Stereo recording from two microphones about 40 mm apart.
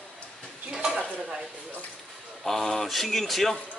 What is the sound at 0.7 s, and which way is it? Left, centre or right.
Stir, centre.